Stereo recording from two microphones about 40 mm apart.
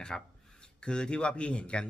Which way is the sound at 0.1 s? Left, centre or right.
Centre.